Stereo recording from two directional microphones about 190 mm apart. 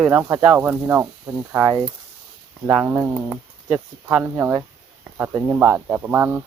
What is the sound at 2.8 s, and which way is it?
Speech, 10° right (ahead or behind).